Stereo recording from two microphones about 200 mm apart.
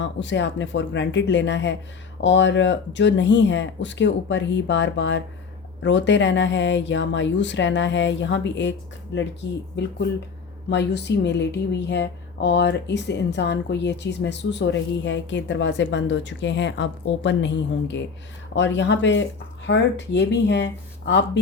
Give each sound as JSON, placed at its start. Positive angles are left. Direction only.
{"t": 0.0, "sound": "speech", "side_deg": 65}